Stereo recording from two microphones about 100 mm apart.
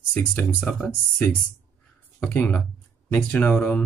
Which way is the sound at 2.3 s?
20° left (ahead or behind).